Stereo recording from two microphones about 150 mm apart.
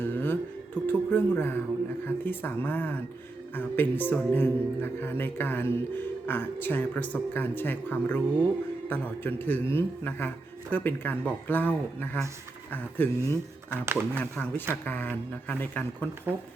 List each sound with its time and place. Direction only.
0.0 s music: 15° left (ahead or behind)
0.9 s a man's voice: 15° left (ahead or behind)
13.8 s speech: 15° right (ahead or behind)
14.2 s a man's voice: 10° left (ahead or behind)